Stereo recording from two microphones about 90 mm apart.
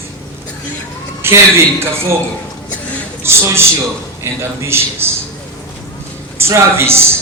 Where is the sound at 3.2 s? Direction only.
30° right (ahead or behind).